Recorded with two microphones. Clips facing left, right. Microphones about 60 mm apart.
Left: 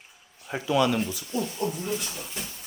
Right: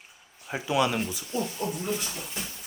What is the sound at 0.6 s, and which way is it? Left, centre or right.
Speech, centre.